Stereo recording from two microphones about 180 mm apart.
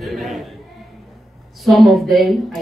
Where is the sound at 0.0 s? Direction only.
Centre (ahead or behind).